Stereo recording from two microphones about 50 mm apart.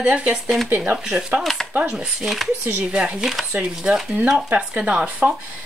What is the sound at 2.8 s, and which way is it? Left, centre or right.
Speech, right.